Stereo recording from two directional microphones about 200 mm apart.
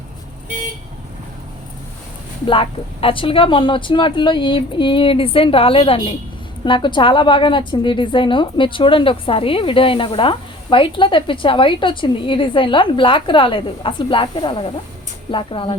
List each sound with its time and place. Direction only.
2.5 s a woman's voice: 25° left (ahead or behind)